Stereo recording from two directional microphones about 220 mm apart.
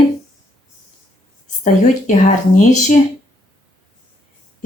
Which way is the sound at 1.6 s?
35° left (ahead or behind).